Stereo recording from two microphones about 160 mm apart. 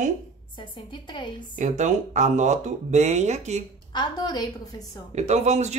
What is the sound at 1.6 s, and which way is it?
Speech, 50° right (ahead or behind).